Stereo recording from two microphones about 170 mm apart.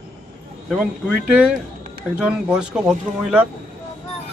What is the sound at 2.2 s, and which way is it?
Speech, 5° right (ahead or behind).